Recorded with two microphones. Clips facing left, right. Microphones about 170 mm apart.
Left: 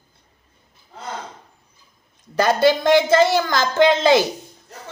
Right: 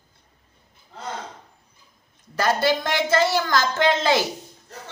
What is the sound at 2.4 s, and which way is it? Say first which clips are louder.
Speech: left 5 dB; 20° left (ahead or behind).